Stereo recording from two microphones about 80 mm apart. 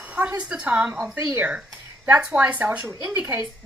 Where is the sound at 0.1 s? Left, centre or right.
Centre.